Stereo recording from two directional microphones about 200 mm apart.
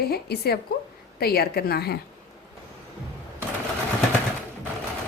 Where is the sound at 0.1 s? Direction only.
50° left (ahead or behind).